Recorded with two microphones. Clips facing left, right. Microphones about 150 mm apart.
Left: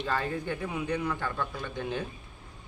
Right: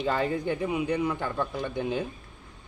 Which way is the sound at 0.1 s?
20° right (ahead or behind).